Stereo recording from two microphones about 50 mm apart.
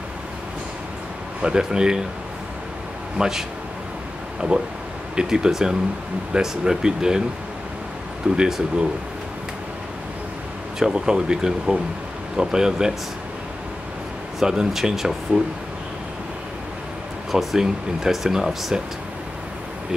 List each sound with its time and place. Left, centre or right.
1.4 s speech: centre
3.2 s speech: centre
4.5 s speech: right
8.4 s speech: centre
10.8 s speech: centre
14.4 s speech: centre
17.3 s speech: centre